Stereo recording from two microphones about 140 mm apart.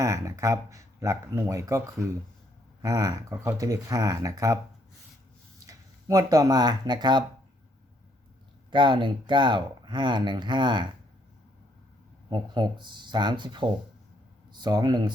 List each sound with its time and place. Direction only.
0.0 s speech: 20° right (ahead or behind)
5.6 s speech: 25° right (ahead or behind)
8.7 s speech: 35° right (ahead or behind)
12.3 s speech: 30° right (ahead or behind)